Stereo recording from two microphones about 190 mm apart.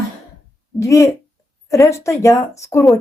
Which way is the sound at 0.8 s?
15° left (ahead or behind).